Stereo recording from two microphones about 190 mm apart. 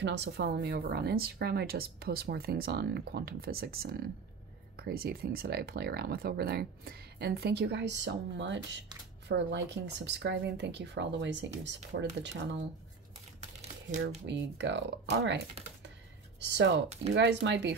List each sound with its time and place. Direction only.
0.0 s speech: 65° right (ahead or behind)
13.4 s a sound: 40° right (ahead or behind)
14.0 s speech: 65° right (ahead or behind)
16.3 s speech: 65° right (ahead or behind)
17.1 s speech: 75° right (ahead or behind)